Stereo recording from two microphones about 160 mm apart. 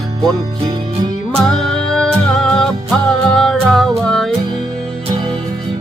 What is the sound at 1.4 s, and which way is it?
Music, 5° left (ahead or behind).